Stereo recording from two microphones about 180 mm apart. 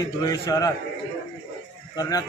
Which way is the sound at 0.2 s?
20° left (ahead or behind).